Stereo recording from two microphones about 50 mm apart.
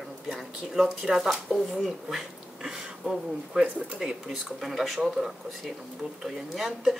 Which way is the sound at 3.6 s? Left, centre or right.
Right.